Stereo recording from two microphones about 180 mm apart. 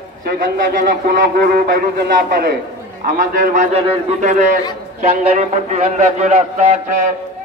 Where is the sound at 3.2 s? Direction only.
50° right (ahead or behind).